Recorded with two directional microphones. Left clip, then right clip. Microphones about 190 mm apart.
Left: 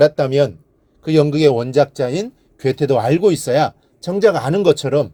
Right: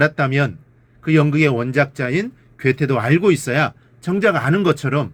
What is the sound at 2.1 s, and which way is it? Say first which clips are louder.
Speech: right 1 dB; 20° left (ahead or behind).